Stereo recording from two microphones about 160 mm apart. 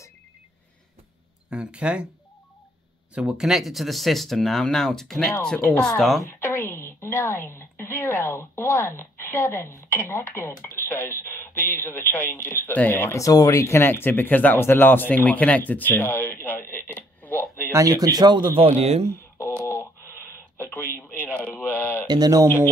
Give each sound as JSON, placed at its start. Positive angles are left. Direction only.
{"t": 1.5, "sound": "speech", "side_deg": -5}
{"t": 3.2, "sound": "speech", "side_deg": -5}
{"t": 6.4, "sound": "speech", "side_deg": 10}
{"t": 16.7, "sound": "a sound", "side_deg": 10}
{"t": 17.6, "sound": "speech", "side_deg": -20}
{"t": 18.6, "sound": "speech", "side_deg": -40}
{"t": 19.6, "sound": "telephone dialing", "side_deg": 15}
{"t": 20.5, "sound": "a sound", "side_deg": 15}
{"t": 21.2, "sound": "speech", "side_deg": 10}
{"t": 22.0, "sound": "speech", "side_deg": -25}